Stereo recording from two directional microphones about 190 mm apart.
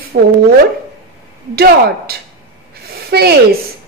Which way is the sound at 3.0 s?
55° right (ahead or behind).